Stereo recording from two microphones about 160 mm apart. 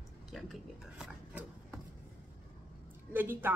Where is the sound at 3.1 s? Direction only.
15° right (ahead or behind).